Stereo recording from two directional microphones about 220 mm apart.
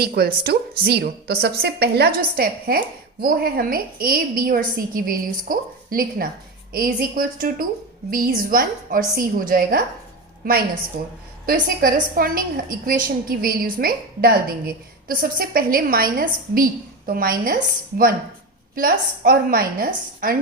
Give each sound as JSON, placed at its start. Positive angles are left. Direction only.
{"t": 0.0, "sound": "a woman's voice", "side_deg": -45}
{"t": 11.4, "sound": "a woman's voice", "side_deg": -40}